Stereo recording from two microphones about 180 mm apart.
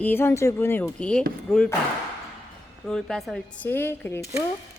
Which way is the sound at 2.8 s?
5° left (ahead or behind).